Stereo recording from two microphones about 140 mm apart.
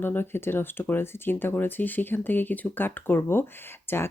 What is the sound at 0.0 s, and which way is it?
Speech, 15° left (ahead or behind).